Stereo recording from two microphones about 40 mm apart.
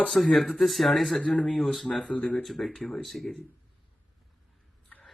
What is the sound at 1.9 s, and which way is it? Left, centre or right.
Speech, left.